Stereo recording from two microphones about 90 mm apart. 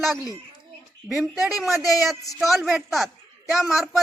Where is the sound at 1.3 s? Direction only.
5° right (ahead or behind).